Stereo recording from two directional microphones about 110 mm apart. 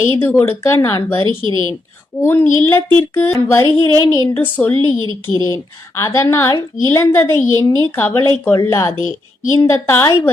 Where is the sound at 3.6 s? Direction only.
45° right (ahead or behind).